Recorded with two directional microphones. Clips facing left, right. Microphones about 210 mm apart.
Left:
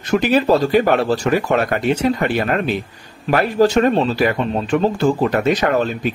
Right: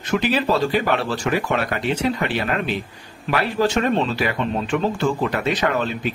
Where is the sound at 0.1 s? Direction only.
45° left (ahead or behind).